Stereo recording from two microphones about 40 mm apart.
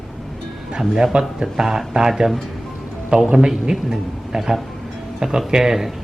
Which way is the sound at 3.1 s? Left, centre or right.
Right.